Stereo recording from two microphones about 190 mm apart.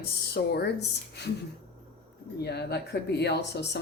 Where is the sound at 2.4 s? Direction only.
60° left (ahead or behind).